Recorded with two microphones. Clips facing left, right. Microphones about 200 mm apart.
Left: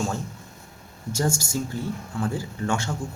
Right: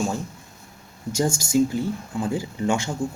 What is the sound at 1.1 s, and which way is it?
Speech, 15° right (ahead or behind).